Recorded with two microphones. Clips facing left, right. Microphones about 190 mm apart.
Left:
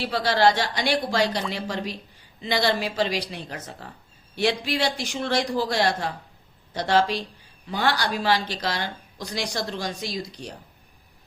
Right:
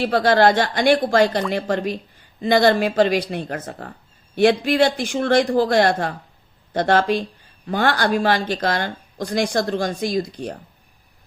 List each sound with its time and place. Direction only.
0.0 s speech: 50° right (ahead or behind)